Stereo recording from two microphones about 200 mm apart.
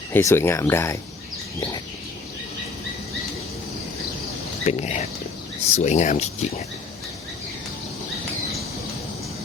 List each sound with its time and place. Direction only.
0.1 s speech: 15° left (ahead or behind)
4.6 s speech: 35° left (ahead or behind)